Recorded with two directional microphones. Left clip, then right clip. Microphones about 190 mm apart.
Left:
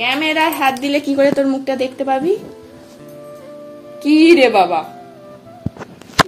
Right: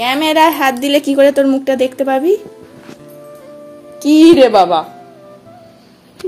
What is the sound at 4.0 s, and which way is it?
Speech, 45° right (ahead or behind).